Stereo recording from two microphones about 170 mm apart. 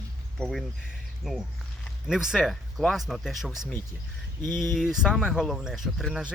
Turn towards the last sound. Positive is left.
turn(degrees=0)  # may be behind; listen again after turning